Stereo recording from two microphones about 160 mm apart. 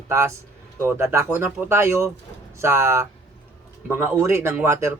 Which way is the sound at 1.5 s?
5° right (ahead or behind).